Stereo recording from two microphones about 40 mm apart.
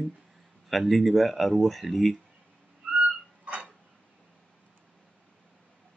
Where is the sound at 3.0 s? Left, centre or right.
Right.